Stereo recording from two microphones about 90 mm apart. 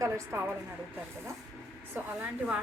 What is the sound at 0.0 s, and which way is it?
Speech, 30° right (ahead or behind).